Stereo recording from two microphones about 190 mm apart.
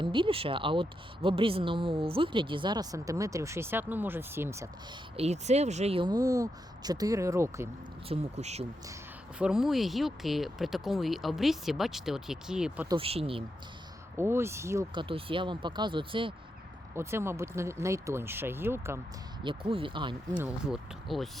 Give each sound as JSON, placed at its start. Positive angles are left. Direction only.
{"t": 0.0, "sound": "speech", "side_deg": -25}
{"t": 5.1, "sound": "speech", "side_deg": -35}
{"t": 8.0, "sound": "speech", "side_deg": -35}
{"t": 9.4, "sound": "speech", "side_deg": -5}
{"t": 12.9, "sound": "speech", "side_deg": -30}
{"t": 14.2, "sound": "speech", "side_deg": -15}
{"t": 14.9, "sound": "speech", "side_deg": -25}
{"t": 16.9, "sound": "speech", "side_deg": -15}
{"t": 19.5, "sound": "speech", "side_deg": -25}
{"t": 20.3, "sound": "speech", "side_deg": -5}